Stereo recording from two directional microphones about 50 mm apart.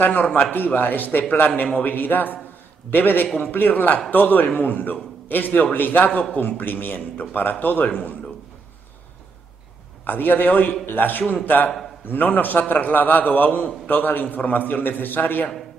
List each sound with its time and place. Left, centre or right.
0.0 s a man's voice: left
10.0 s a man's voice: left